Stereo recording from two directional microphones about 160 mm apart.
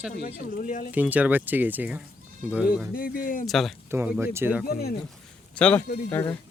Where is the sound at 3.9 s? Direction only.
15° right (ahead or behind).